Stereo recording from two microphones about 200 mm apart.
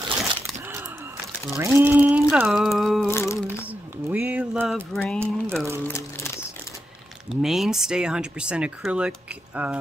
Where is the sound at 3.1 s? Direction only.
15° left (ahead or behind).